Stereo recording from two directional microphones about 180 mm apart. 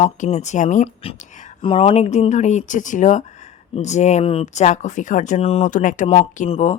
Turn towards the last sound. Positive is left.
turn(degrees=40)  # may be behind; listen again after turning